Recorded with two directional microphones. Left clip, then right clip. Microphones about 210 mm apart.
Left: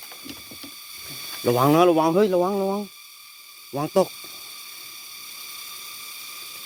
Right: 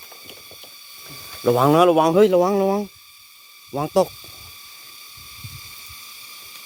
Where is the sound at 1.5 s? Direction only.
10° right (ahead or behind); by 2.8 s 30° right (ahead or behind).